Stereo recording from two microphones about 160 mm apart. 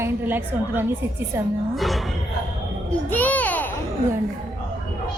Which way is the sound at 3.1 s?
10° left (ahead or behind).